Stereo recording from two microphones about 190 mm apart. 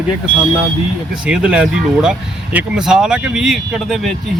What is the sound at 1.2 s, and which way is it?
Speech, 5° right (ahead or behind).